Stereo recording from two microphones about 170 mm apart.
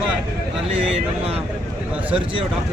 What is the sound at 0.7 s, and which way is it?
Speech, 35° right (ahead or behind).